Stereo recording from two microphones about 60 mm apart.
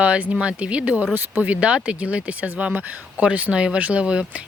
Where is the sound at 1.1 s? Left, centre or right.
Right.